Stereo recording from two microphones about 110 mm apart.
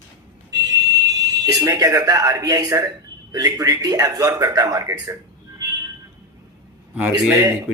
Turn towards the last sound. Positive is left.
turn(degrees=-30)  # may be behind; listen again after turning